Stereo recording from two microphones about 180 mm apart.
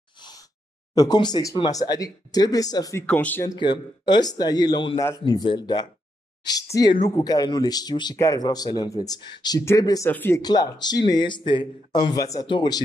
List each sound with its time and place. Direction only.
0.9 s speech: 25° left (ahead or behind); by 3.4 s 10° left (ahead or behind)
3.4 s speech: 25° left (ahead or behind)
10.4 s speech: 25° left (ahead or behind)